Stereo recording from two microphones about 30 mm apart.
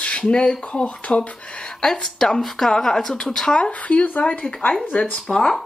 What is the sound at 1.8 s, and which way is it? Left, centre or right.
Speech, left.